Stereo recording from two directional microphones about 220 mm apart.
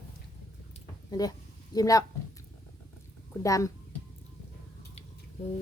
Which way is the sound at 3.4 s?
15° left (ahead or behind).